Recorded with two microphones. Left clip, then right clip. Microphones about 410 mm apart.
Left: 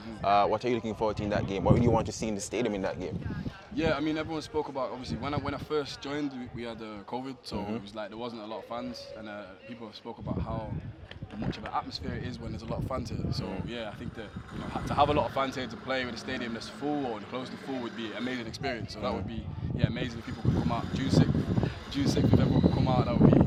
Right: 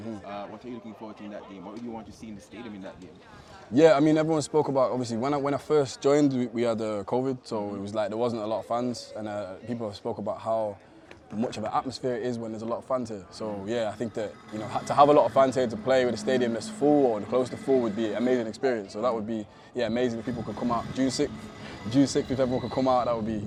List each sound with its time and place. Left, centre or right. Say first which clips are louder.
0.3 s speech: left 19 dB; left
3.8 s a man's voice: right 10 dB; right
8.0 s a man's voice: right 10 dB; right
11.7 s speech: right 5 dB; right
13.7 s a man's voice: right 9 dB; right
20.7 s speech: right 4 dB; right